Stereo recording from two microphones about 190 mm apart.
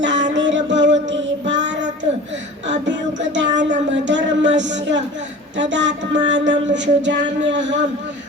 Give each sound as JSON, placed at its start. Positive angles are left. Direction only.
{"t": 0.0, "sound": "music", "side_deg": -70}
{"t": 1.5, "sound": "child singing", "side_deg": -70}
{"t": 5.5, "sound": "music", "side_deg": -70}